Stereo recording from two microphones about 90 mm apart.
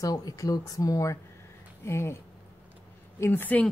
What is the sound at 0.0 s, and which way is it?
Speech, 45° left (ahead or behind).